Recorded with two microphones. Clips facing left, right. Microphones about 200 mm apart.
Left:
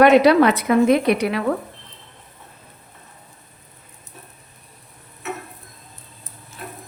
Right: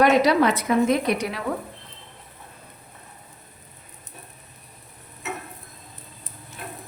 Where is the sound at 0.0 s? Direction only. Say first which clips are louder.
Left 5 dB; 65° left (ahead or behind).